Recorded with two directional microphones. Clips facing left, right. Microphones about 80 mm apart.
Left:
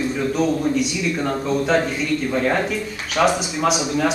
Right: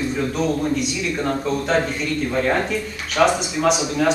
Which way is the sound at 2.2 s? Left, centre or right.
Centre.